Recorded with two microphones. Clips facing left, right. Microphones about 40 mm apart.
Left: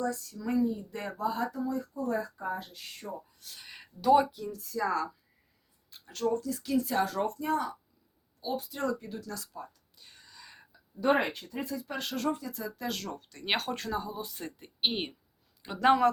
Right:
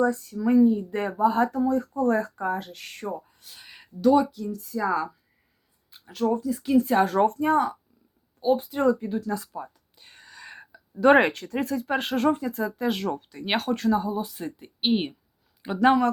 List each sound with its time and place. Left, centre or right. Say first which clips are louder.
0.0 s speech: right 10 dB; right
3.4 s a sound: right 1 dB; centre
4.0 s speech: right 4 dB; centre
4.5 s speech: right 4 dB; centre
5.9 s a sound: right 8 dB; centre
6.3 s speech: right 5 dB; centre
6.6 s speech: right 10 dB; right
10.2 s a sound: right 11 dB; right
11.9 s speech: right 9 dB; right
13.3 s speech: right 3 dB; centre